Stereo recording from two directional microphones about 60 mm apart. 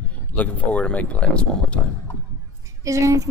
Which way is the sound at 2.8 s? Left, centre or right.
Right.